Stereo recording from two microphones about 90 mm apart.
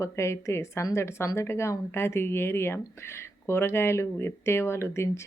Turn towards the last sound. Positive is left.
turn(degrees=30)  # may be behind; listen again after turning